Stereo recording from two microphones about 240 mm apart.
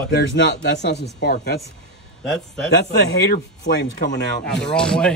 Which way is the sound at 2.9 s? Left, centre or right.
Left.